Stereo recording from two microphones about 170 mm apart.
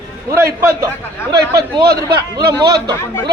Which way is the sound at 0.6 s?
15° right (ahead or behind).